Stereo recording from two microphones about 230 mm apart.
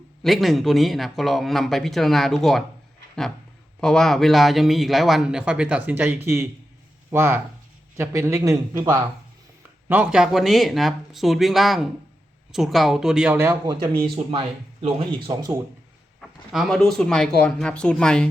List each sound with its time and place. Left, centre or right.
0.2 s speech: centre
3.8 s speech: centre
14.3 s speech: right
16.5 s speech: centre